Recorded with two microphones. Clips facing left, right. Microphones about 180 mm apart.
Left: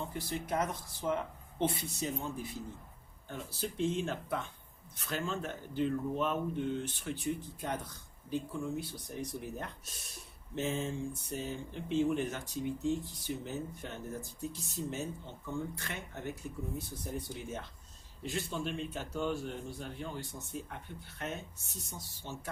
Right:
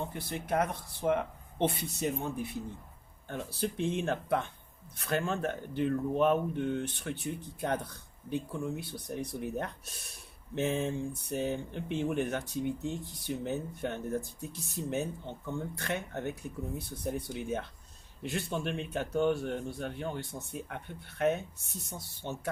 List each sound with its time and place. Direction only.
0.0 s speech: 60° right (ahead or behind)